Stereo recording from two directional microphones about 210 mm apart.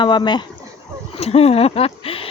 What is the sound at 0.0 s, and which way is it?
Speech, 20° left (ahead or behind).